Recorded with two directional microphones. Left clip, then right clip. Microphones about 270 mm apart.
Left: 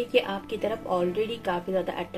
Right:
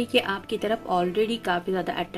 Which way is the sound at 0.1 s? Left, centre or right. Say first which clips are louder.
Right 2 dB; right.